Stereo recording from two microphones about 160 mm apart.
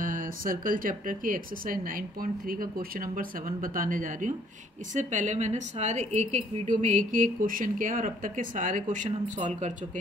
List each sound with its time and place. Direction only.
0.0 s speech: 60° right (ahead or behind)